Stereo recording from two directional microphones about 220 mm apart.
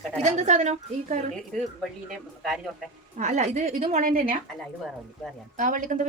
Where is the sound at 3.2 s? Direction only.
30° right (ahead or behind).